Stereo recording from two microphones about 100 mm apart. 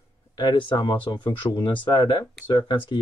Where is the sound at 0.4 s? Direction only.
50° left (ahead or behind).